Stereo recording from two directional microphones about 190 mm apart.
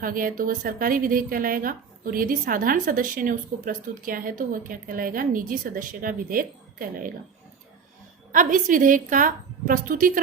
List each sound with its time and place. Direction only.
0.0 s a woman's voice: 45° right (ahead or behind)
8.3 s a woman's voice: 45° right (ahead or behind)